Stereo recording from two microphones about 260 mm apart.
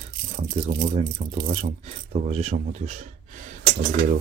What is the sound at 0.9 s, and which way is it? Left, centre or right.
Speech, right.